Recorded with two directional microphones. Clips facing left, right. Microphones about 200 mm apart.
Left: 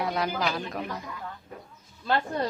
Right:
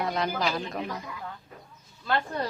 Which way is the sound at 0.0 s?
5° left (ahead or behind).